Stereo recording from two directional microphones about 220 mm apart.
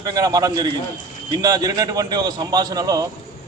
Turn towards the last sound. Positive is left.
turn(degrees=-15)  # may be behind; listen again after turning